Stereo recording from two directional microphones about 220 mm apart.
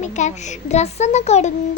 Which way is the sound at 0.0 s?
30° left (ahead or behind).